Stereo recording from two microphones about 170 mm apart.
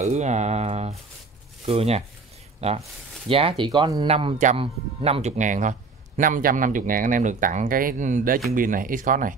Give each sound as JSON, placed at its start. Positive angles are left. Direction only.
{"t": 0.0, "sound": "a man's voice", "side_deg": -40}